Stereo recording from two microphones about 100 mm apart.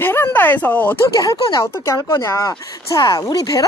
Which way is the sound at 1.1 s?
40° left (ahead or behind).